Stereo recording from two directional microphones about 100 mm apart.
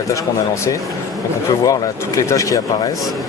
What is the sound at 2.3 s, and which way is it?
Speech, 35° left (ahead or behind).